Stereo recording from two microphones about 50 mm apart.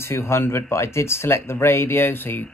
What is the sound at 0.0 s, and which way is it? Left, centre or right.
Speech, left.